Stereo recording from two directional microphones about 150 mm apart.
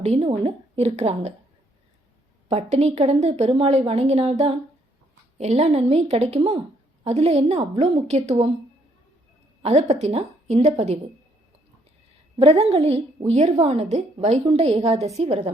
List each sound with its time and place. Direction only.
0.0 s a woman's voice: 45° right (ahead or behind)
2.5 s a woman's voice: 45° right (ahead or behind)
9.6 s a woman's voice: 45° right (ahead or behind)
12.4 s a woman's voice: 45° right (ahead or behind)